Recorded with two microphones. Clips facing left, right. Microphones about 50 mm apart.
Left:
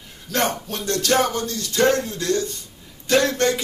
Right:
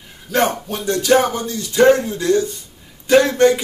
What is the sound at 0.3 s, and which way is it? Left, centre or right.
Speech, centre.